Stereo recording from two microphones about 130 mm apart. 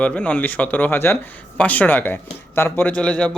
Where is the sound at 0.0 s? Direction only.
10° left (ahead or behind).